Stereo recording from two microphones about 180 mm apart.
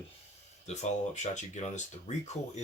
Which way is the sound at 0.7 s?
40° left (ahead or behind).